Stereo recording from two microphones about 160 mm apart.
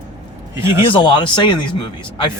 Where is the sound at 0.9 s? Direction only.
30° left (ahead or behind).